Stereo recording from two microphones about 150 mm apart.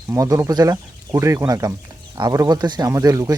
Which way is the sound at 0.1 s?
20° right (ahead or behind).